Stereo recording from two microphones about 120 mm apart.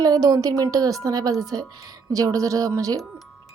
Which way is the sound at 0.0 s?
35° right (ahead or behind).